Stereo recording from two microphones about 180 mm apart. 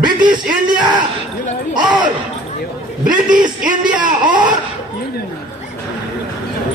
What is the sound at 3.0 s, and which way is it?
Speech, 50° right (ahead or behind).